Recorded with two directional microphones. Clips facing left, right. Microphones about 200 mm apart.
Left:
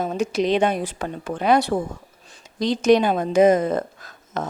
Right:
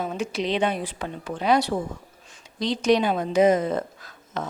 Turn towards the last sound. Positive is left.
turn(degrees=45)  # may be behind; listen again after turning